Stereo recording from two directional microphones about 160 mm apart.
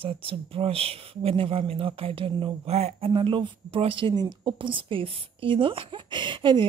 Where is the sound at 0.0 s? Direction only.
35° right (ahead or behind).